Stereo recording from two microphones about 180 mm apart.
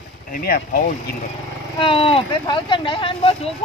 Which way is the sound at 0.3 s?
50° left (ahead or behind).